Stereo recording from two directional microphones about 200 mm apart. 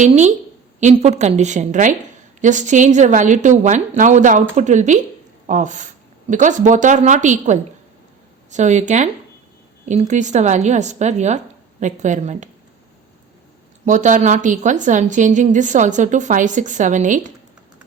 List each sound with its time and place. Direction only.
0.0 s a woman's voice: 35° right (ahead or behind)
13.8 s a woman's voice: 35° right (ahead or behind)